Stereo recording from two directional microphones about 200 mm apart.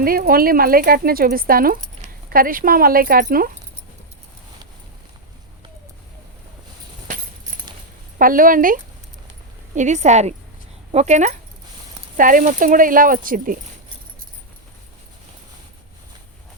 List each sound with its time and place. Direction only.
0.0 s speech: 45° right (ahead or behind)
8.2 s a woman's voice: 45° right (ahead or behind)